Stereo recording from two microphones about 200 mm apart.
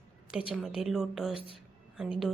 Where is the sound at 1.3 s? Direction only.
25° left (ahead or behind).